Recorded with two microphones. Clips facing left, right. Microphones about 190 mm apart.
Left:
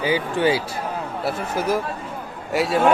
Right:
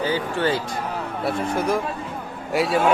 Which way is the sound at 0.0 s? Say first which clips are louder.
Left 2 dB; 10° left (ahead or behind).